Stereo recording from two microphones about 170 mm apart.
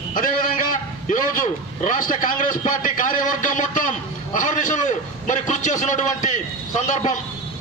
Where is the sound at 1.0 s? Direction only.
50° left (ahead or behind).